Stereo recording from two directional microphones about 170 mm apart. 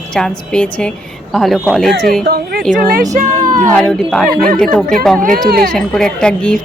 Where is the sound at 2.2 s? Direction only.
65° right (ahead or behind).